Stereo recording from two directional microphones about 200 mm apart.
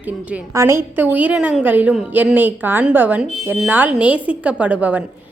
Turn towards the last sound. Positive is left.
turn(degrees=-10)  # may be behind; listen again after turning